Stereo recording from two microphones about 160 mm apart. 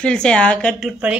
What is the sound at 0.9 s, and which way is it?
Speech, 5° right (ahead or behind).